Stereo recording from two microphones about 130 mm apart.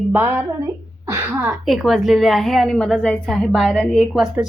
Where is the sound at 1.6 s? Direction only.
Centre (ahead or behind).